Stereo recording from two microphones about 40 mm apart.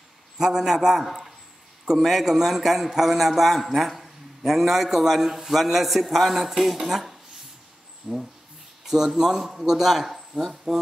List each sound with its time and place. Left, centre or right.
0.4 s speech: centre
1.0 s a man's voice: centre
2.0 s a man's voice: centre
8.0 s speech: centre